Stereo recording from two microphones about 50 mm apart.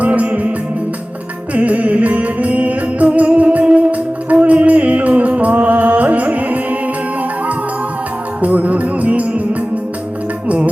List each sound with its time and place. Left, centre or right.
0.0 s music: right
1.5 s music: right
8.4 s music: right